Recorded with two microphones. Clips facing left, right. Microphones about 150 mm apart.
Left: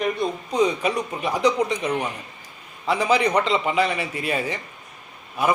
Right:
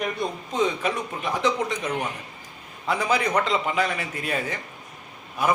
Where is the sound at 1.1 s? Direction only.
15° left (ahead or behind).